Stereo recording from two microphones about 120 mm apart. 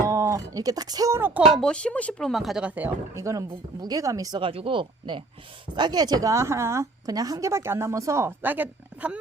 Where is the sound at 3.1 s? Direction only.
25° right (ahead or behind).